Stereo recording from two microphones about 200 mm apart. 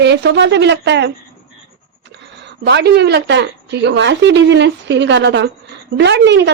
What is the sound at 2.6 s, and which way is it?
Speech, 60° right (ahead or behind).